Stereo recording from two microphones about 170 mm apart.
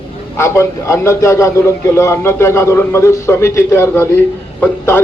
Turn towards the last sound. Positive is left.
turn(degrees=10)  # may be behind; listen again after turning